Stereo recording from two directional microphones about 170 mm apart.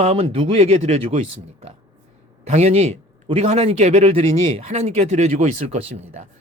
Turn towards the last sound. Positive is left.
turn(degrees=-40)  # may be behind; listen again after turning